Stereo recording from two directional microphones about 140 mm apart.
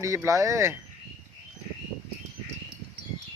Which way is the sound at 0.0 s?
20° right (ahead or behind).